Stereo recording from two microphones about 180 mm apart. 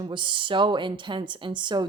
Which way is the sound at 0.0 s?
25° right (ahead or behind).